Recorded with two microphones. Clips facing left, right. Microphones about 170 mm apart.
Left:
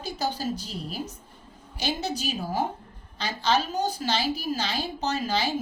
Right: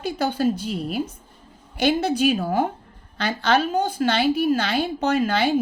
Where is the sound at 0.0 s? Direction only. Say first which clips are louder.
Right 8 dB; 55° right (ahead or behind).